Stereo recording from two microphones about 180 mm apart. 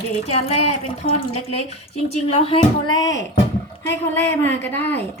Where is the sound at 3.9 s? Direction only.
10° left (ahead or behind).